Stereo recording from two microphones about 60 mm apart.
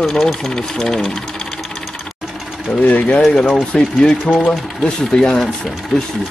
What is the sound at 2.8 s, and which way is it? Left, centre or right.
Speech, left.